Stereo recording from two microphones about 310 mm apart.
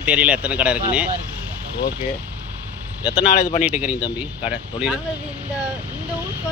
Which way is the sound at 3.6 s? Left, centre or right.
Centre.